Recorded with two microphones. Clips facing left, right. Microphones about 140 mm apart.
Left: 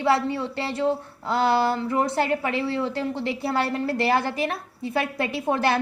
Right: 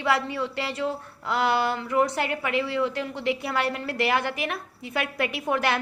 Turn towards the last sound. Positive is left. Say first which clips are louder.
# left 3 dB
turn(degrees=30)  # may be behind; listen again after turning